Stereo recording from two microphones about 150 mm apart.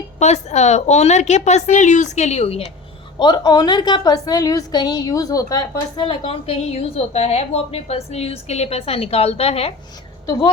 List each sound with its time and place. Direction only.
0.2 s a woman's voice: 50° left (ahead or behind)
3.2 s a woman's voice: 30° left (ahead or behind)
6.1 s a woman's voice: 40° left (ahead or behind)